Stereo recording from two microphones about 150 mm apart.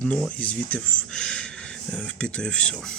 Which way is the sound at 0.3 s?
10° left (ahead or behind).